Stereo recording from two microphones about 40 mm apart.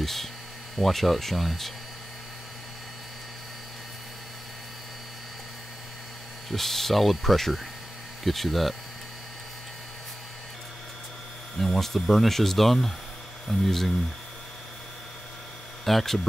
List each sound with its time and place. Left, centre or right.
0.0 s speech: centre
6.5 s speech: centre
11.5 s speech: centre
15.8 s speech: centre